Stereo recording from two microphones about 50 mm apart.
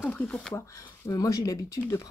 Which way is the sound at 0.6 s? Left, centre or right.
Left.